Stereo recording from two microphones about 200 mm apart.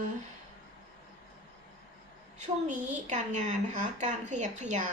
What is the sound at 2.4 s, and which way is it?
A woman's voice, 35° right (ahead or behind).